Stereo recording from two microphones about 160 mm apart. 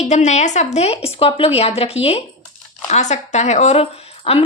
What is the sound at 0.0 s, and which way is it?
A woman's voice, 45° left (ahead or behind).